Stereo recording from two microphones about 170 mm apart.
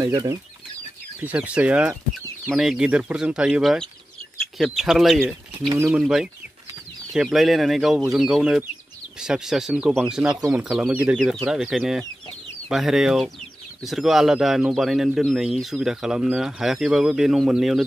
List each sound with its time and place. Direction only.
0.0 s speech: 15° right (ahead or behind)